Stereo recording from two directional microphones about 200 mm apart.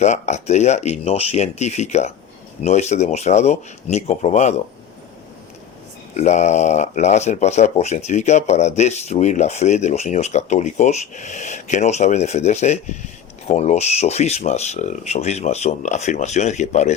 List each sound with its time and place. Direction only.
0.0 s speech: 35° left (ahead or behind)
6.1 s speech: 35° left (ahead or behind)